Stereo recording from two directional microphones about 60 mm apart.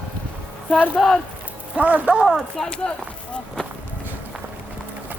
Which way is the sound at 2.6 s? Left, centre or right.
Centre.